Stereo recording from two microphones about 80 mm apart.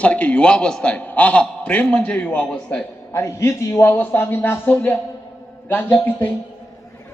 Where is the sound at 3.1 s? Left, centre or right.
Left.